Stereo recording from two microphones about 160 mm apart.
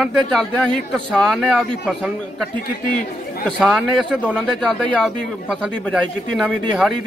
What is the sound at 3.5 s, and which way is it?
Speech, 5° right (ahead or behind).